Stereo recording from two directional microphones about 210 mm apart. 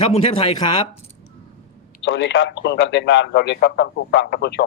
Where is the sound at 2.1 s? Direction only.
55° left (ahead or behind).